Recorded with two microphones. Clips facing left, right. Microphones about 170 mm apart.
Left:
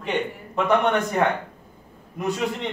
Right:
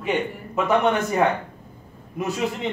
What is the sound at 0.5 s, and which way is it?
A man's voice, 5° right (ahead or behind).